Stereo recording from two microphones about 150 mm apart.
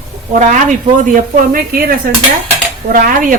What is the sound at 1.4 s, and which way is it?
Speech, 75° right (ahead or behind).